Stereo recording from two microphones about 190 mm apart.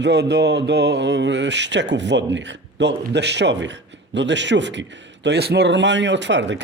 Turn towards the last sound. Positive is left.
turn(degrees=-70)  # may be behind; listen again after turning